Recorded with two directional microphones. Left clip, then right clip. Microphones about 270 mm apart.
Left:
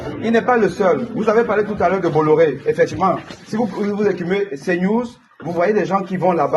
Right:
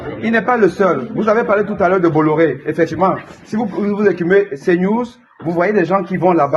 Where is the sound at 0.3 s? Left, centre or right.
Right.